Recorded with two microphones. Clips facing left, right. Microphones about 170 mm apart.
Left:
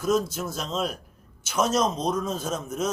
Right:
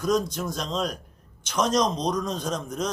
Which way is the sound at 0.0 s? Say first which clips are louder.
Even; 5° left (ahead or behind).